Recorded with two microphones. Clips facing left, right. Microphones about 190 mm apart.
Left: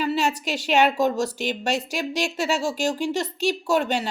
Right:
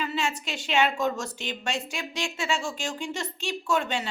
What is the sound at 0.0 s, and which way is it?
A woman's voice, 35° left (ahead or behind).